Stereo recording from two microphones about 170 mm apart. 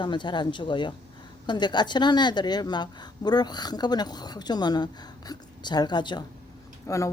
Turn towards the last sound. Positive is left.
turn(degrees=15)  # may be behind; listen again after turning